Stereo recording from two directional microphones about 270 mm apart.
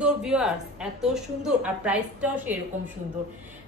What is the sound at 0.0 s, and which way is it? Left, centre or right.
A woman's voice, centre.